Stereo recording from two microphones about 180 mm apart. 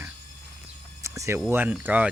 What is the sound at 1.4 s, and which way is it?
Speech, 10° right (ahead or behind).